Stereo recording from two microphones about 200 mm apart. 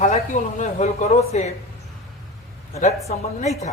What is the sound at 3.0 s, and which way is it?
Speech, 35° left (ahead or behind).